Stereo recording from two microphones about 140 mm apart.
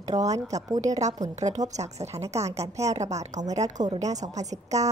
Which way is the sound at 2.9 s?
50° right (ahead or behind).